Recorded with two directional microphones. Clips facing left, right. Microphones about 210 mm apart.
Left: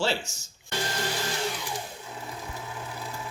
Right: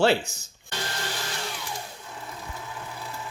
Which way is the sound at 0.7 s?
55° right (ahead or behind).